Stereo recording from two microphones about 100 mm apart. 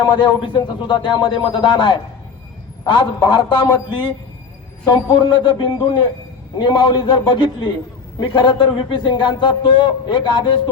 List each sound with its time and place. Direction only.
0.0 s a man's voice: 50° left (ahead or behind)